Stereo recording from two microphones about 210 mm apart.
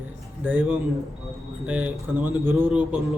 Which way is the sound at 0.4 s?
5° right (ahead or behind).